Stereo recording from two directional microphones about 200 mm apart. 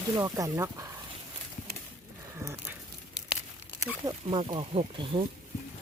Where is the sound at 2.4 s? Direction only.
10° right (ahead or behind).